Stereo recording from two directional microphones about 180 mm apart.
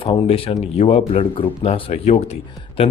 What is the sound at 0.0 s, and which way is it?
Speech, 30° left (ahead or behind).